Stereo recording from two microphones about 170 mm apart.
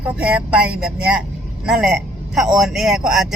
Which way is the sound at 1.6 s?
Centre (ahead or behind).